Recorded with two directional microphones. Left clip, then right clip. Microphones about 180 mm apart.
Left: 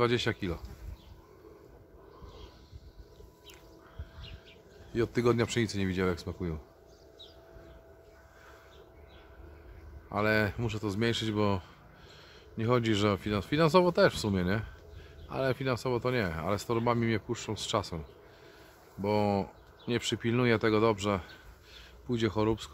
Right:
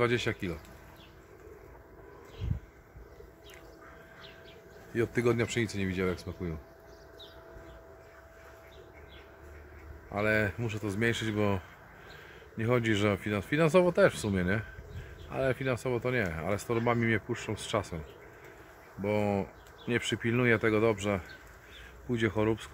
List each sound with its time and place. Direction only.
0.0 s speech: 30° left (ahead or behind)
4.9 s speech: 25° left (ahead or behind)
10.1 s speech: 25° left (ahead or behind)
18.9 s speech: 25° left (ahead or behind)